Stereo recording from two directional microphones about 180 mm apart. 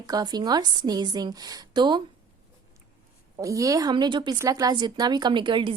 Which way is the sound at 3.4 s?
20° right (ahead or behind).